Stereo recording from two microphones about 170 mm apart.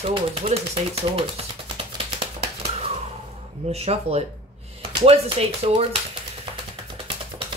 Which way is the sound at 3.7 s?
35° right (ahead or behind).